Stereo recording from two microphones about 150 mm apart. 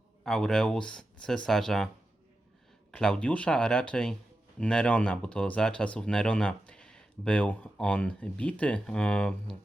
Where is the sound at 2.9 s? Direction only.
5° left (ahead or behind).